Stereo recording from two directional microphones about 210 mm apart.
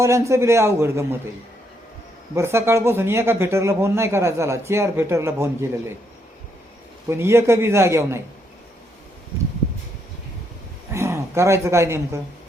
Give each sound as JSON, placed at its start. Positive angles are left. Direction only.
{"t": 0.0, "sound": "speech", "side_deg": -15}
{"t": 2.3, "sound": "speech", "side_deg": -10}
{"t": 7.1, "sound": "speech", "side_deg": -10}
{"t": 10.9, "sound": "speech", "side_deg": -15}